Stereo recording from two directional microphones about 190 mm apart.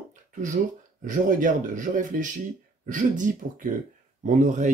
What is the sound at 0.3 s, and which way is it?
Speech, 40° right (ahead or behind).